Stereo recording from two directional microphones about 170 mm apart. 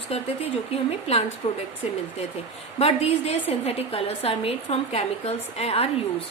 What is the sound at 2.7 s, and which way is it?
A woman's voice, 35° left (ahead or behind).